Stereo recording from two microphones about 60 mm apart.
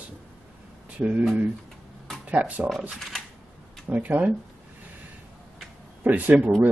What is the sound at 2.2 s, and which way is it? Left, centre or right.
Speech, right.